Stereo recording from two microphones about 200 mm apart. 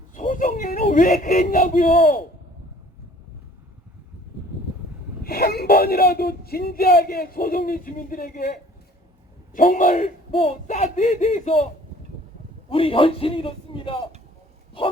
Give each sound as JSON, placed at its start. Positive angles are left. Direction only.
{"t": 0.1, "sound": "speech", "side_deg": 40}
{"t": 5.2, "sound": "a man's voice", "side_deg": 50}
{"t": 12.7, "sound": "a man's voice", "side_deg": 25}